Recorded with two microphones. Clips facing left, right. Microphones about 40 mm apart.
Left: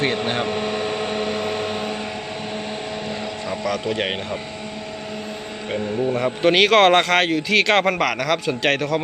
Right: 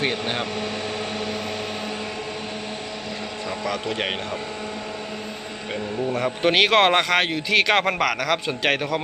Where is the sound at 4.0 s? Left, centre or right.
Centre.